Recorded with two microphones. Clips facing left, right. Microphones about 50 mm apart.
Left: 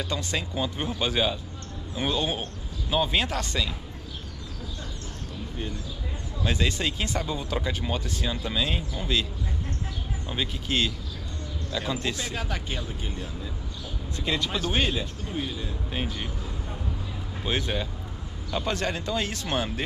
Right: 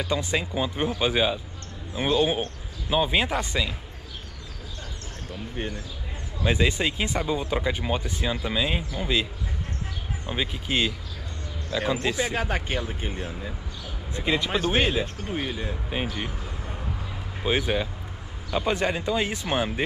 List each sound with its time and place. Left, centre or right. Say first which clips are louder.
0.0 s speech: right 4 dB; centre
5.6 s speech: right 3 dB; right
6.4 s speech: right 4 dB; centre
12.4 s speech: right 5 dB; right
14.1 s speech: right 4 dB; centre
15.3 s speech: right 2 dB; right
15.9 s speech: right 2 dB; centre
17.4 s speech: right 4 dB; centre